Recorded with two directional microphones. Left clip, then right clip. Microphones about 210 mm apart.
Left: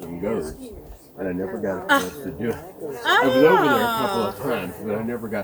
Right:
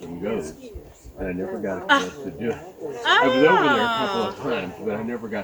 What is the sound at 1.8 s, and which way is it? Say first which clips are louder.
Speech: right 1 dB; 50° left (ahead or behind).